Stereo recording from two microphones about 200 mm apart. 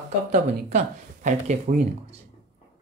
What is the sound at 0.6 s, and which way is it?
Speech, 35° right (ahead or behind).